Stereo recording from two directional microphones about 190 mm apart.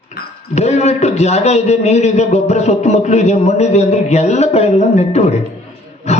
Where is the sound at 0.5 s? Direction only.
35° left (ahead or behind).